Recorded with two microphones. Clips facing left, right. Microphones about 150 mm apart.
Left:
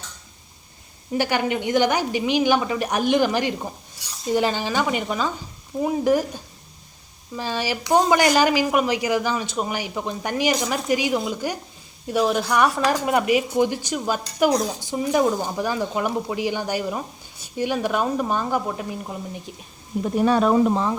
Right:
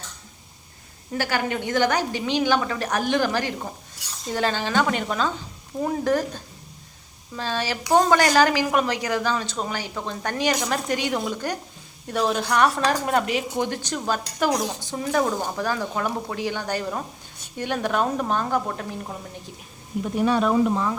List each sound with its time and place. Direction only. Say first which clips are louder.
1.1 s a woman's voice: left 3 dB; 20° left (ahead or behind)
20.2 s speech: left 2 dB; 40° left (ahead or behind)